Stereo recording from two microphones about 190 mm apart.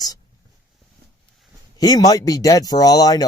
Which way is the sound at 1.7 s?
20° left (ahead or behind).